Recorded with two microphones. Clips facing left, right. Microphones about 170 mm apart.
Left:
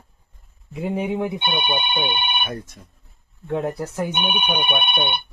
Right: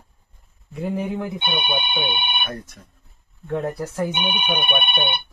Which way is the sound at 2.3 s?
10° left (ahead or behind).